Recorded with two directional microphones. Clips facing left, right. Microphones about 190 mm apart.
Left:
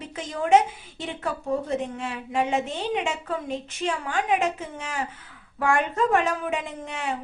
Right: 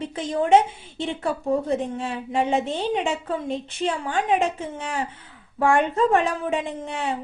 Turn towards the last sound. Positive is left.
turn(degrees=-30)  # may be behind; listen again after turning